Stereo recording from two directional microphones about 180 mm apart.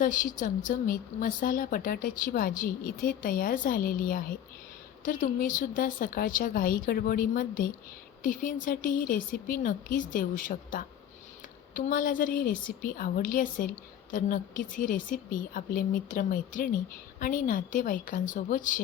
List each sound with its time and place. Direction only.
0.0 s speech: 50° left (ahead or behind)